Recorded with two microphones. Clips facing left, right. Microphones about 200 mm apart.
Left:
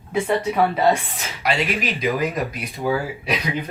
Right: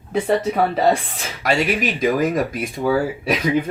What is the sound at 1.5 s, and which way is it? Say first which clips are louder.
Speech: right 3 dB; 45° right (ahead or behind).